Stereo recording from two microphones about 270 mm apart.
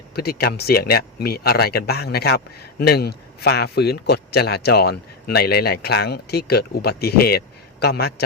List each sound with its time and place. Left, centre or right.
0.2 s speech: left